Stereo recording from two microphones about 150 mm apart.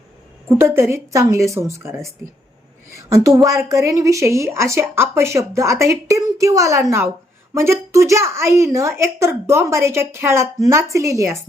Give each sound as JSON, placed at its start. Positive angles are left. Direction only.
{"t": 0.4, "sound": "a woman's voice", "side_deg": -15}